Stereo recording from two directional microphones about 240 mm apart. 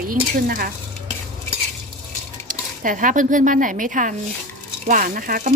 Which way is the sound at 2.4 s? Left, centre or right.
Right.